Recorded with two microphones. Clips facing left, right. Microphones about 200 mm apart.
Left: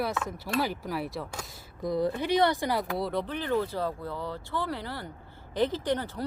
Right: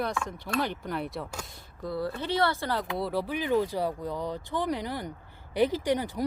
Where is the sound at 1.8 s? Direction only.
15° left (ahead or behind).